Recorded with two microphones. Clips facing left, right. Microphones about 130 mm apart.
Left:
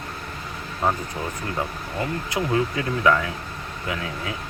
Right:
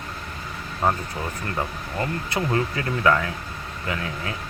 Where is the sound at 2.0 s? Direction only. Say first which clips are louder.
Even; 10° left (ahead or behind).